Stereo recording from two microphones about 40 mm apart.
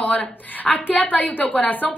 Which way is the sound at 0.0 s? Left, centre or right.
Left.